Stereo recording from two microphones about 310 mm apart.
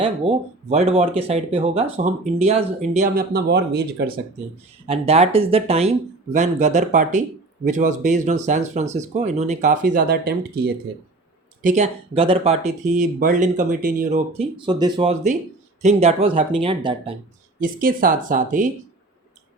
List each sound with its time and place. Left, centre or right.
0.0 s speech: centre
4.9 s speech: centre